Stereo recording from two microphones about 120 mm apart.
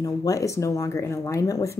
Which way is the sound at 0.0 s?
30° left (ahead or behind).